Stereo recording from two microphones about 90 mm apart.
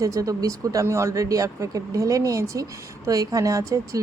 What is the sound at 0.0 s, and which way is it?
A woman's voice, 40° right (ahead or behind).